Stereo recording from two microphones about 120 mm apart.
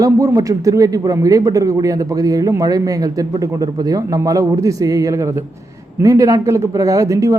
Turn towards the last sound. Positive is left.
turn(degrees=-25)  # may be behind; listen again after turning